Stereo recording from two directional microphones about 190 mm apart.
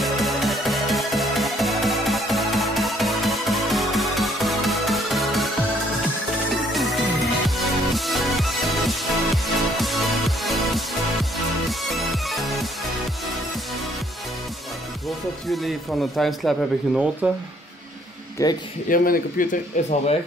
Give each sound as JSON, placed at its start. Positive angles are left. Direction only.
{"t": 0.0, "sound": "music", "side_deg": 0}
{"t": 6.5, "sound": "music", "side_deg": 0}
{"t": 11.8, "sound": "music", "side_deg": 0}
{"t": 15.0, "sound": "speech", "side_deg": 0}
{"t": 18.4, "sound": "speech", "side_deg": 15}
{"t": 18.9, "sound": "speech", "side_deg": 45}